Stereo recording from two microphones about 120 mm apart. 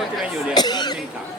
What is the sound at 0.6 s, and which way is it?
Speech, 35° left (ahead or behind).